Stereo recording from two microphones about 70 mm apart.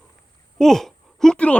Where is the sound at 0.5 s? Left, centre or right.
Centre.